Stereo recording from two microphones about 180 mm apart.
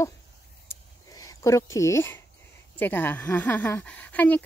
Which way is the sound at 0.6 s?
20° left (ahead or behind).